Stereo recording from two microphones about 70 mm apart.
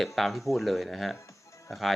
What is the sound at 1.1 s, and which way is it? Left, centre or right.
Music, left.